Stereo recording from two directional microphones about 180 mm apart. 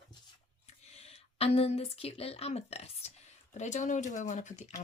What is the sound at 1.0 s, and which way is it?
Speech, 35° left (ahead or behind).